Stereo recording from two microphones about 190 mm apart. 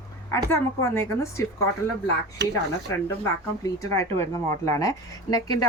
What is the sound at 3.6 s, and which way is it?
A woman's voice, 20° left (ahead or behind).